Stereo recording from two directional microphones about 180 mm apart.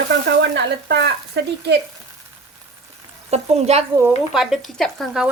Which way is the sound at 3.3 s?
35° right (ahead or behind).